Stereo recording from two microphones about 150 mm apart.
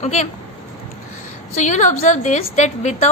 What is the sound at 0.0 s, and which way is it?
Speech, 50° left (ahead or behind).